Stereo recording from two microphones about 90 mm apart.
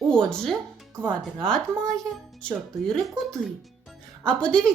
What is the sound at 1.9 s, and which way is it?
Speech, 5° left (ahead or behind).